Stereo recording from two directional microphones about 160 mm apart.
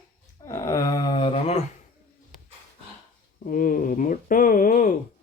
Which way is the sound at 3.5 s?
60° left (ahead or behind).